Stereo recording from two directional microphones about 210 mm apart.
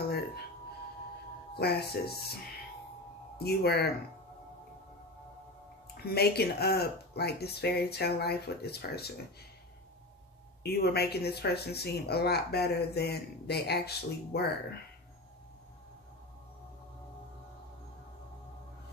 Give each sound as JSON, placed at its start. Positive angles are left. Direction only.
{"t": 1.6, "sound": "speech", "side_deg": 50}
{"t": 3.4, "sound": "speech", "side_deg": 50}
{"t": 6.0, "sound": "speech", "side_deg": 50}
{"t": 10.6, "sound": "speech", "side_deg": 50}